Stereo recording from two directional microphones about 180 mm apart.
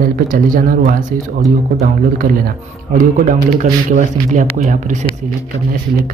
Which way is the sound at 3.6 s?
45° right (ahead or behind).